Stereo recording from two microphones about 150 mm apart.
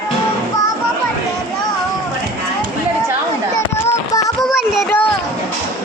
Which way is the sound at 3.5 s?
20° left (ahead or behind).